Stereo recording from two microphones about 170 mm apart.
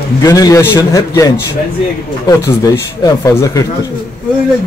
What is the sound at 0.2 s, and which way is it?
Speech, 20° left (ahead or behind).